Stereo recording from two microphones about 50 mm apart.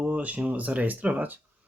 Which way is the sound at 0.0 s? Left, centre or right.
Right.